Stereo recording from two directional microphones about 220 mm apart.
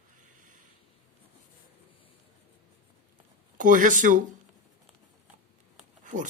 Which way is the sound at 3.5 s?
35° right (ahead or behind).